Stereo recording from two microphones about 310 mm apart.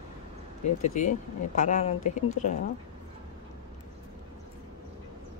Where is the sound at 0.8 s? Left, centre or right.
Left.